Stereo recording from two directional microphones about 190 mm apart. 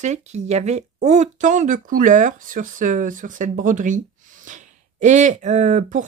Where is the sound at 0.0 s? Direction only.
35° right (ahead or behind).